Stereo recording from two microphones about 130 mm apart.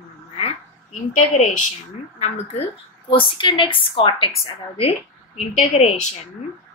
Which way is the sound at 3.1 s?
40° left (ahead or behind).